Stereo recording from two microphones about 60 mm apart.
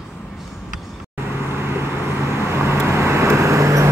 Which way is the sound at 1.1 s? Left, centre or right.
Right.